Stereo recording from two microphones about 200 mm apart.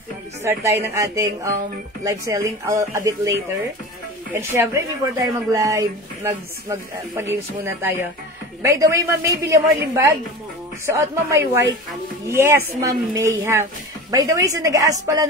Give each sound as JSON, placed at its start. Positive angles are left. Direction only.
{"t": 0.4, "sound": "speech", "side_deg": -10}
{"t": 4.4, "sound": "speech", "side_deg": -15}